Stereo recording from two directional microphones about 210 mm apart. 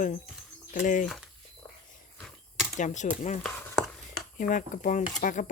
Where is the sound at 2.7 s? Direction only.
35° left (ahead or behind).